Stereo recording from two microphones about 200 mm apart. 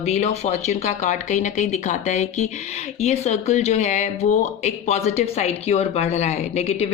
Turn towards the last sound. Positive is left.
turn(degrees=35)  # may be behind; listen again after turning